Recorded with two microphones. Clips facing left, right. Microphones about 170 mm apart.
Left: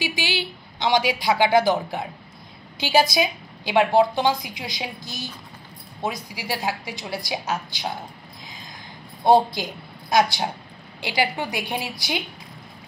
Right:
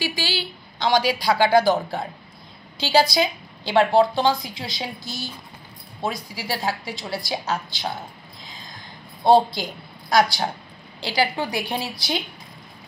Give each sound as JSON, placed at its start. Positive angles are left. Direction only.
{"t": 0.0, "sound": "speech", "side_deg": 20}
{"t": 2.8, "sound": "a woman's voice", "side_deg": 20}
{"t": 9.2, "sound": "a woman's voice", "side_deg": 15}